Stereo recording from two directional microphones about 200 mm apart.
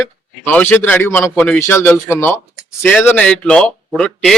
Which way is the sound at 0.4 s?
10° left (ahead or behind).